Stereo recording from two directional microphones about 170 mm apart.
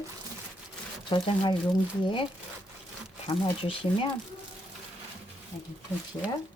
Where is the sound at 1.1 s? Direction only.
30° left (ahead or behind).